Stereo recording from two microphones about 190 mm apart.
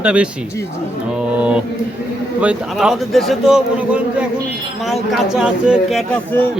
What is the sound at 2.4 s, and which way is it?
A man's voice, 5° right (ahead or behind).